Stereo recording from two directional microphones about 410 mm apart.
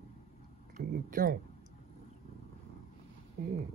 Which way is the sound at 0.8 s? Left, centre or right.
Centre.